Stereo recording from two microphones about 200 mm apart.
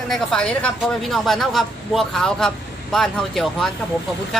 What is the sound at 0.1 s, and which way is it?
A man's voice, 5° left (ahead or behind).